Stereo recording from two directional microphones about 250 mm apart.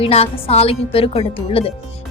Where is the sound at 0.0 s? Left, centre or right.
Left.